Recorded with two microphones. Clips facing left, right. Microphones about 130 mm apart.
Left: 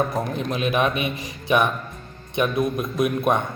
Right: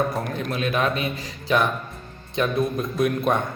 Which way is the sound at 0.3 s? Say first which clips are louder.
Left 2 dB; 25° left (ahead or behind).